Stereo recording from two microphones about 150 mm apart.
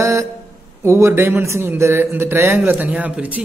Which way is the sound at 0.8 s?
15° right (ahead or behind).